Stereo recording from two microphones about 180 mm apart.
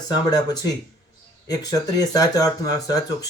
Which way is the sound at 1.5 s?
20° left (ahead or behind).